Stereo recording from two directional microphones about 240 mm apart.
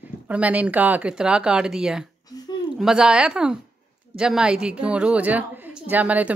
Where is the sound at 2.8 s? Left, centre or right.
Centre.